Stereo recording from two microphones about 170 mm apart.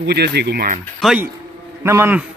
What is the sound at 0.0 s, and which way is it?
Speech, 75° right (ahead or behind).